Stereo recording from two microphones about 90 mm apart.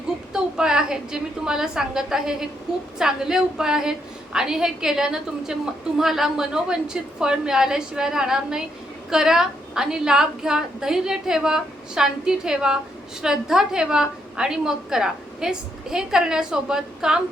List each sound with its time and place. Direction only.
0.3 s a woman's voice: 5° right (ahead or behind)